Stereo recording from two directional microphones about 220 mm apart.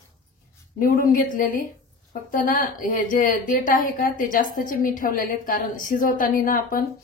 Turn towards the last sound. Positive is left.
turn(degrees=40)  # may be behind; listen again after turning